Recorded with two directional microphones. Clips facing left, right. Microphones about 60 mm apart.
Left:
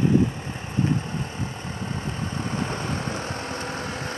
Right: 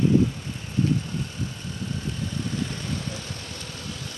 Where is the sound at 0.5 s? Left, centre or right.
Left.